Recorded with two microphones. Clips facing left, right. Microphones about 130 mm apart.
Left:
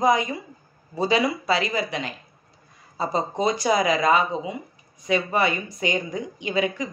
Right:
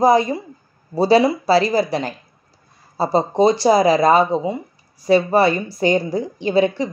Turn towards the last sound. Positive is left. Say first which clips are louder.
# right 8 dB
turn(degrees=-30)  # may be behind; listen again after turning